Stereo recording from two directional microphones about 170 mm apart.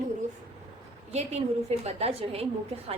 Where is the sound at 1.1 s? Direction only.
40° right (ahead or behind).